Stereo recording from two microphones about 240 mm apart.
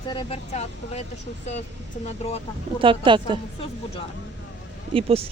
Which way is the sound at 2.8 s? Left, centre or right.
Right.